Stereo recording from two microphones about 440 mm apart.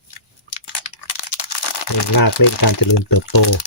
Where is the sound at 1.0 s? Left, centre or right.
Left.